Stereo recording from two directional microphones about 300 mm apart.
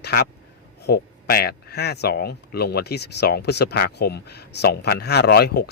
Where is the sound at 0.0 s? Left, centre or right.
Left.